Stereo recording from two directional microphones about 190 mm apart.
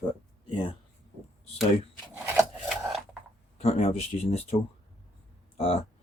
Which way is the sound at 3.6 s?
35° left (ahead or behind).